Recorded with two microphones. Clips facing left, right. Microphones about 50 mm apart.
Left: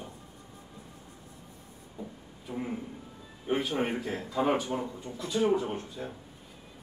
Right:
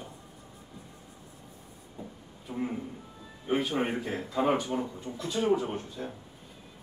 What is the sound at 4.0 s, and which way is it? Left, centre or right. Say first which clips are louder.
Speech: right 1 dB; centre.